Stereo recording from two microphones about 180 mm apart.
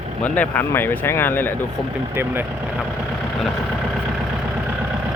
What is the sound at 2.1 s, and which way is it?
Speech, 10° right (ahead or behind).